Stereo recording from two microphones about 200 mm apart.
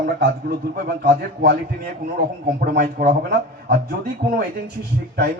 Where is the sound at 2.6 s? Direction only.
45° right (ahead or behind).